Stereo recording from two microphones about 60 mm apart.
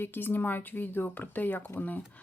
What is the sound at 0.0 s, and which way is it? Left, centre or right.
Speech, left.